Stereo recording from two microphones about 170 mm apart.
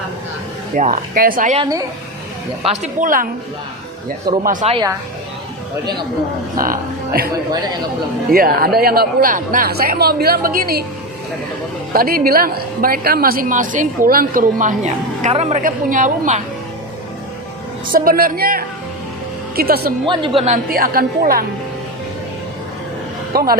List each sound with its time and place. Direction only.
0.8 s speech: 55° right (ahead or behind)
2.6 s speech: 45° right (ahead or behind)
4.3 s a woman's voice: 60° right (ahead or behind)
4.6 s a woman's voice: 40° right (ahead or behind)
6.6 s speech: 60° right (ahead or behind)
8.3 s a woman's voice: 60° right (ahead or behind)
11.9 s a woman's voice: 60° right (ahead or behind)
17.9 s a woman's voice: 55° right (ahead or behind)
20.1 s a woman's voice: 30° right (ahead or behind)
20.7 s a woman's voice: 60° right (ahead or behind)
23.3 s a woman's voice: 60° right (ahead or behind)